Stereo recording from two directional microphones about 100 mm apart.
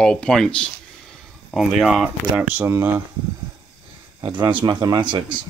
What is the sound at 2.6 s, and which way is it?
Speech, 25° right (ahead or behind).